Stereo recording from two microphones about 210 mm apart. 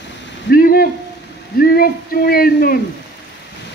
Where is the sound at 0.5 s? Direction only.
45° left (ahead or behind).